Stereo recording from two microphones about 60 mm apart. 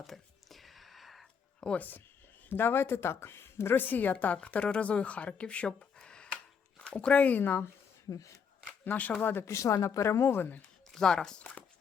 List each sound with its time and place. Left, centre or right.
0.0 s chopping: centre
1.6 s speech: left
2.5 s speech: left
8.1 s speech: left
8.6 s a sound: left
9.5 s speech: left
10.9 s speech: centre